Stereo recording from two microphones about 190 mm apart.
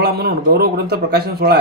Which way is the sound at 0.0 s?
55° right (ahead or behind).